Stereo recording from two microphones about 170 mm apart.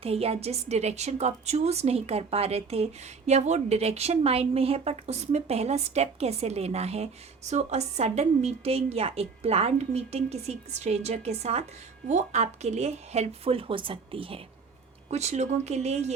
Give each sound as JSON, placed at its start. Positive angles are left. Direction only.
{"t": 0.0, "sound": "a woman's voice", "side_deg": -35}